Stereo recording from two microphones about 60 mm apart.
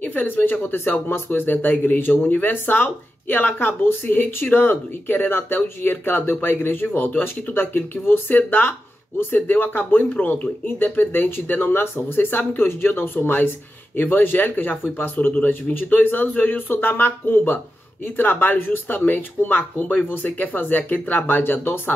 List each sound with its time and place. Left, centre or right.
0.0 s speech: left